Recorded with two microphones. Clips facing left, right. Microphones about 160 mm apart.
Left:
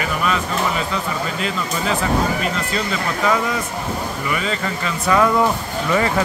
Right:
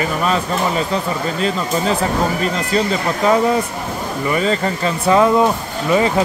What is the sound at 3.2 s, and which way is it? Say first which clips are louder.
Speech: right 6 dB; 30° right (ahead or behind).